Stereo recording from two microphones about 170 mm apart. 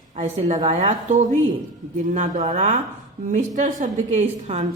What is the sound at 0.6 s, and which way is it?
A woman's voice, 35° right (ahead or behind).